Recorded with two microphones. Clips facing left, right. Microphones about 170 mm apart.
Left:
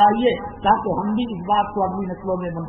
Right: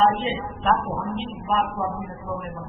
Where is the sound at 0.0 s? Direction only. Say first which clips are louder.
Left 5 dB; 50° left (ahead or behind).